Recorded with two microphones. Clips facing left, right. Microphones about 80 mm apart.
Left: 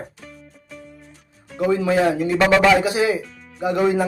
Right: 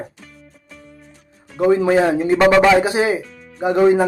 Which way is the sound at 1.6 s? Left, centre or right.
Right.